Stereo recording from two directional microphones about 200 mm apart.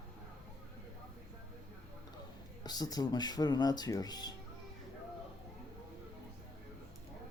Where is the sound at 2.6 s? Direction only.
20° left (ahead or behind).